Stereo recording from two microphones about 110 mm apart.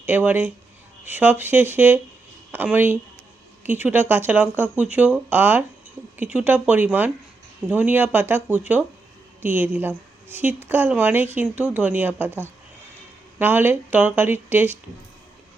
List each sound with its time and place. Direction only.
0.0 s a woman's voice: 15° right (ahead or behind)